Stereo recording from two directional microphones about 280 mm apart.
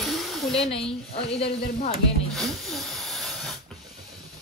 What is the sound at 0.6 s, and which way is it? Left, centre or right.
Speech, centre.